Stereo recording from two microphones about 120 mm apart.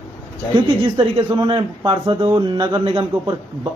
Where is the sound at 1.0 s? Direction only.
45° right (ahead or behind).